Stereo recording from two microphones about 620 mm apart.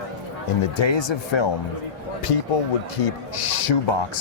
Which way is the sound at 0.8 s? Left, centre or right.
Left.